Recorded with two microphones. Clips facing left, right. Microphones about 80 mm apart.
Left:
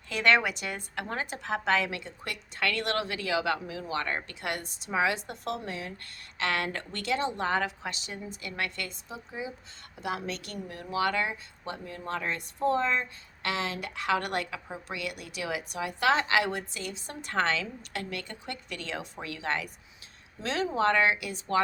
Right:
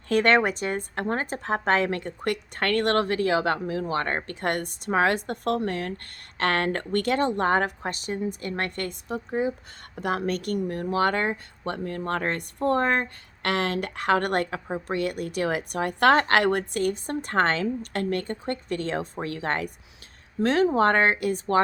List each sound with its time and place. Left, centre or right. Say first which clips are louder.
0.1 s a woman's voice: right 5 dB; right